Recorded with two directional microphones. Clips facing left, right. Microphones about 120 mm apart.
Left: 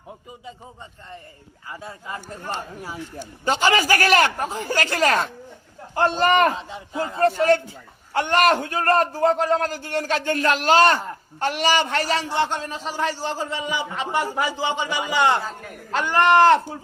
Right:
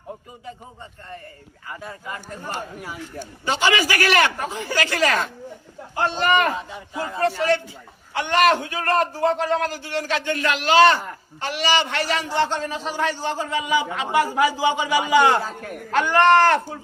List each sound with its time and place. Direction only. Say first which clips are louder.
1.8 s a man's voice: even; 25° left (ahead or behind)
3.4 s a man's voice: left 1 dB; 40° left (ahead or behind)
6.6 s a man's voice: left 2 dB; 25° left (ahead or behind)
7.2 s a man's voice: left 3 dB; 45° left (ahead or behind)
12.5 s a man's voice: right 2 dB; centre (ahead or behind)
16.4 s a man's voice: left 3 dB; 20° left (ahead or behind)